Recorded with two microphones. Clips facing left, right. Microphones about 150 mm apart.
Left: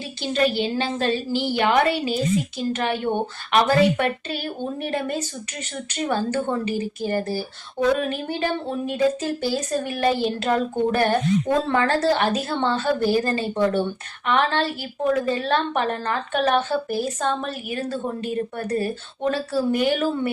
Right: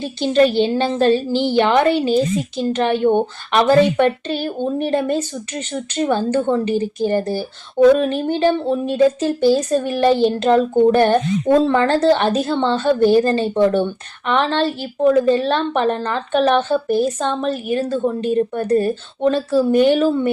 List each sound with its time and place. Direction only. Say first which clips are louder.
0.0 s speech: right 7 dB; 30° right (ahead or behind)
0.8 s a woman's voice: right 9 dB; 40° right (ahead or behind)
1.4 s a woman's voice: right 5 dB; 30° right (ahead or behind)
18.2 s speech: right 8 dB; 25° right (ahead or behind)